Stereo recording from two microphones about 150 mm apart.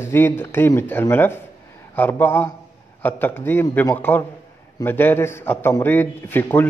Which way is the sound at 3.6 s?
25° left (ahead or behind).